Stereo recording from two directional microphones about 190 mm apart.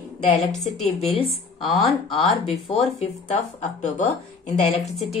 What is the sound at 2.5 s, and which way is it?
Speech, centre (ahead or behind).